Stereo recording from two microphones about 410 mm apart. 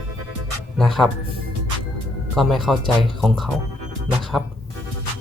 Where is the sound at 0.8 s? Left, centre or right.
Centre.